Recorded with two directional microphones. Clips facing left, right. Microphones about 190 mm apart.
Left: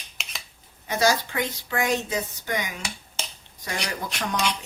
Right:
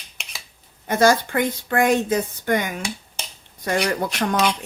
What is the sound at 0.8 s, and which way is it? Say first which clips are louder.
Speech: right 6 dB; 55° right (ahead or behind).